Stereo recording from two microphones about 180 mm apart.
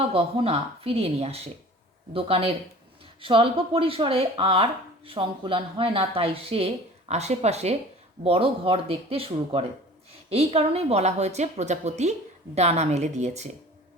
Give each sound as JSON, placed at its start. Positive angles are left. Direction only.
{"t": 0.1, "sound": "speech", "side_deg": -35}